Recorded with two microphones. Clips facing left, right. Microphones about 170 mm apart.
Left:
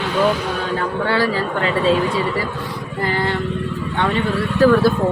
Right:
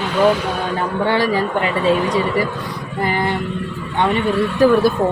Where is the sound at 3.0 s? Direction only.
15° right (ahead or behind).